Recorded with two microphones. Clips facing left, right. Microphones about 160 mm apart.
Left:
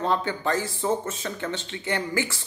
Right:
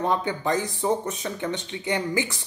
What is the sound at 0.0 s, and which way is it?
Speech, 15° right (ahead or behind).